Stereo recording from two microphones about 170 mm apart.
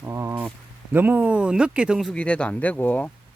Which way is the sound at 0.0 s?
15° right (ahead or behind).